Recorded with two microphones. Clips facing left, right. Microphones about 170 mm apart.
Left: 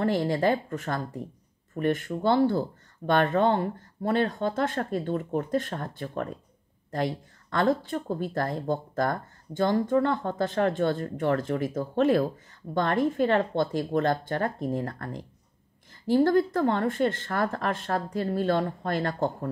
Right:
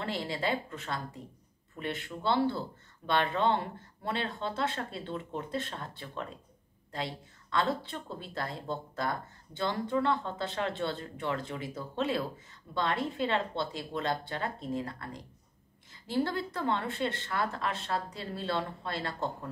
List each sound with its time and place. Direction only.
0.0 s speech: 45° left (ahead or behind)